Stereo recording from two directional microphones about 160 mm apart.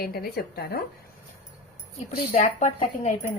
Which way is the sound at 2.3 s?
50° left (ahead or behind).